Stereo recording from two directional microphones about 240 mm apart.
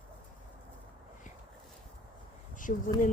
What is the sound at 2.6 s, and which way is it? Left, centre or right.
Speech, left.